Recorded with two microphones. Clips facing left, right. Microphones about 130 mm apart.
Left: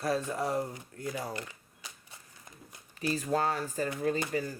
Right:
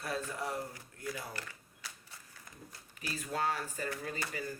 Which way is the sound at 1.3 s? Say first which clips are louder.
Left 6 dB; 20° left (ahead or behind).